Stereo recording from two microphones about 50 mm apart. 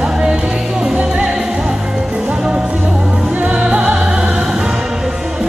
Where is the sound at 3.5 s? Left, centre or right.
Centre.